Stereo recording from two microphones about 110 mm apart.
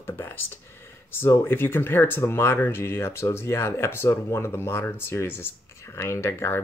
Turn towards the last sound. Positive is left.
turn(degrees=25)  # may be behind; listen again after turning